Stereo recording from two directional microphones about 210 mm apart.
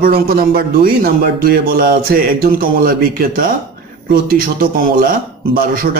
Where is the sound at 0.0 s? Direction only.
45° right (ahead or behind).